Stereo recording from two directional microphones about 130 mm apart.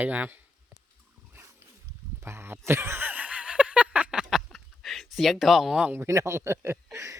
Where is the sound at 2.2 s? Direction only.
20° right (ahead or behind).